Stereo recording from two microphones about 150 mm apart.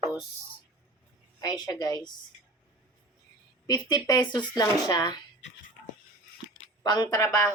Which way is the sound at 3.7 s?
25° left (ahead or behind).